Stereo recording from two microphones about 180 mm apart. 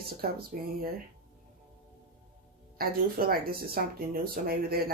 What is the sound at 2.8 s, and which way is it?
Speech, 55° right (ahead or behind).